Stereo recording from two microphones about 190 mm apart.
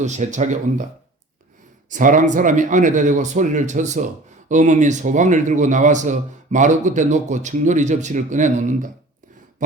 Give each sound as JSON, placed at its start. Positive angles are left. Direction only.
{"t": 0.0, "sound": "a man's voice", "side_deg": -40}
{"t": 1.9, "sound": "a man's voice", "side_deg": -45}
{"t": 9.6, "sound": "a sound", "side_deg": -45}